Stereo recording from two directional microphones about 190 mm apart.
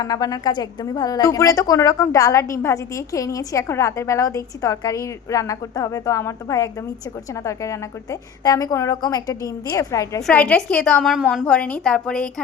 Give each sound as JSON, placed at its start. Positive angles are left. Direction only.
{"t": 0.0, "sound": "a woman's voice", "side_deg": 20}
{"t": 10.2, "sound": "a woman's voice", "side_deg": 5}